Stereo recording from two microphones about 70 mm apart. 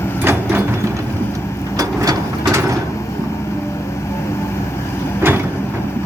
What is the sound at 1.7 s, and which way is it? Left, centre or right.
Vehicle, right.